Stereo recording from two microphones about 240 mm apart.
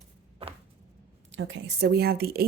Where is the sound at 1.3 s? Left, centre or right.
Right.